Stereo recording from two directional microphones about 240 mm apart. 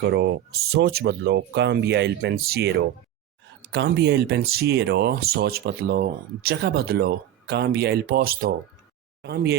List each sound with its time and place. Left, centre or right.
0.1 s speech: right